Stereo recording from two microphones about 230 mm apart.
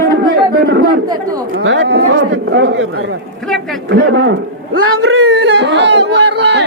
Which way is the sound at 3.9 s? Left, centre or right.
Right.